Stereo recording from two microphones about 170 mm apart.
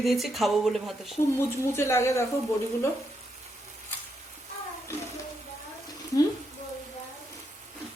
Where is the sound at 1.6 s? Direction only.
15° left (ahead or behind).